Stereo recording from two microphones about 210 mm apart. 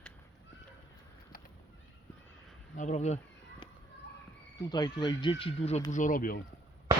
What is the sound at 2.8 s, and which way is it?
Insect, 35° left (ahead or behind).